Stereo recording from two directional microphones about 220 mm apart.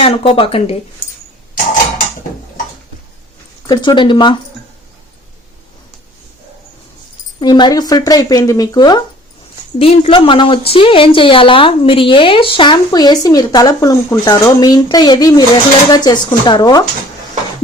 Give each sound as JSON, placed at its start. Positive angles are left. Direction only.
{"t": 0.0, "sound": "speech", "side_deg": 25}
{"t": 3.7, "sound": "a woman's voice", "side_deg": 20}
{"t": 7.3, "sound": "a woman's voice", "side_deg": 20}